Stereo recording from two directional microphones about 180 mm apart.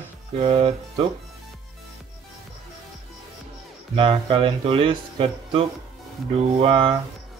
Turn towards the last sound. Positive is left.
turn(degrees=-30)  # may be behind; listen again after turning